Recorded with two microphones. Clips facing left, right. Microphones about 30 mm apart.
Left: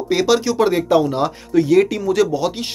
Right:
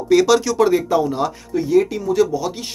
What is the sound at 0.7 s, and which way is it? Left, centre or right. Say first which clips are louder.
Speech: left 2 dB; left.